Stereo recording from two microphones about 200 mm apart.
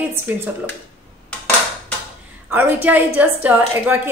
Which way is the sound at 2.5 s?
10° right (ahead or behind).